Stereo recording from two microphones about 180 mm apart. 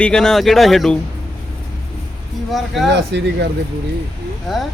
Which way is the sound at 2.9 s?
70° right (ahead or behind).